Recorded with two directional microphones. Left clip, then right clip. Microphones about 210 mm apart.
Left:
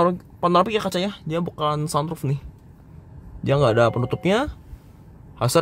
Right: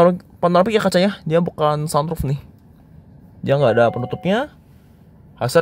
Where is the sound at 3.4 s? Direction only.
10° right (ahead or behind).